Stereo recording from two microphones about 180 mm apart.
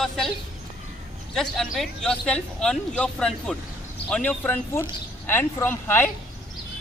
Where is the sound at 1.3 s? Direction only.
5° left (ahead or behind).